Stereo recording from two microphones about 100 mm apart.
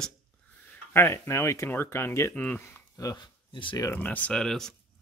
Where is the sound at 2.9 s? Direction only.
45° left (ahead or behind).